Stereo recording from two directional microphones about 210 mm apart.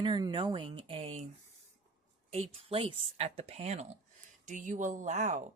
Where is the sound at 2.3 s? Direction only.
30° right (ahead or behind).